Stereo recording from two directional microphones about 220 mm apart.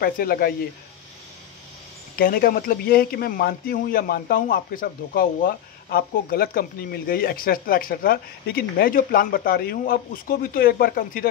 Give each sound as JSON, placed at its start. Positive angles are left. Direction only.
{"t": 0.0, "sound": "speech", "side_deg": 40}
{"t": 2.1, "sound": "a man's voice", "side_deg": 40}